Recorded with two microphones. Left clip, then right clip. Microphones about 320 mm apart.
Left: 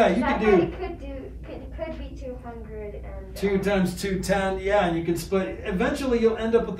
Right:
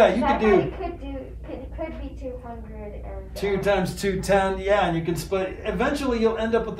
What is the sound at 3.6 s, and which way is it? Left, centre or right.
Speech, centre.